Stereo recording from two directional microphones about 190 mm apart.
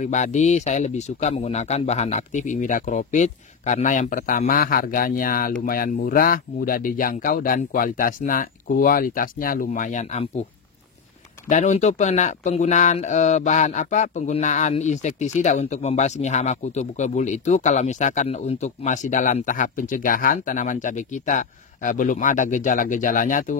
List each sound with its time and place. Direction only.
0.0 s speech: 40° left (ahead or behind)
11.4 s speech: 40° left (ahead or behind)